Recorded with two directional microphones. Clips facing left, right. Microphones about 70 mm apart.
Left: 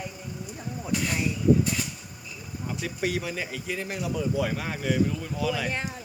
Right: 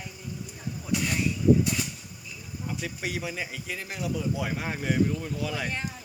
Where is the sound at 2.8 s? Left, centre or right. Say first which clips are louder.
Left 5 dB; centre.